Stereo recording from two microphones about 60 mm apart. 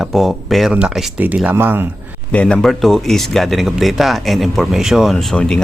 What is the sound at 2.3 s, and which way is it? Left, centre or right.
Speech, centre.